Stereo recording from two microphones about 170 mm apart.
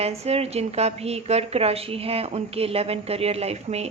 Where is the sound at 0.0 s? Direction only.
35° right (ahead or behind).